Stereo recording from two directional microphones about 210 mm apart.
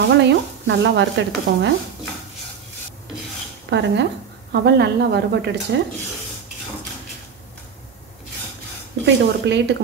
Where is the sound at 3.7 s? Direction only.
55° right (ahead or behind).